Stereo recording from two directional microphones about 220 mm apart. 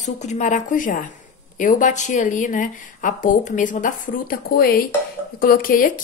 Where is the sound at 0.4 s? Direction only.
35° left (ahead or behind).